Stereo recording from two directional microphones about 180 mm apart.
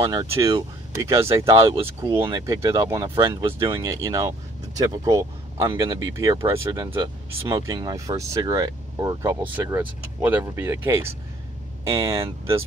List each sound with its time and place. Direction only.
0.0 s speech: 20° right (ahead or behind)